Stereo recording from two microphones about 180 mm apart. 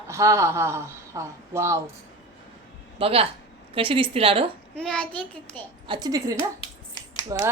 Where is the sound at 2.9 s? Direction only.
30° right (ahead or behind).